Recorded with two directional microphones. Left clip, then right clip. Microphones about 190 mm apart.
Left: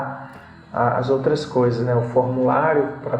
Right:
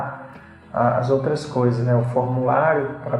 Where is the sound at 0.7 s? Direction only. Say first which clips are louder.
Even; 35° left (ahead or behind).